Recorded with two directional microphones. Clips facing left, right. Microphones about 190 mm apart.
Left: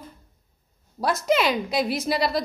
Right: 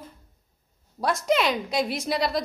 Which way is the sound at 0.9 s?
Centre (ahead or behind).